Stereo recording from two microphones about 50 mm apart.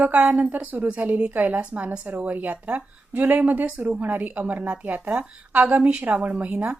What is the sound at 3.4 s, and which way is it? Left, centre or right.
A woman's voice, right.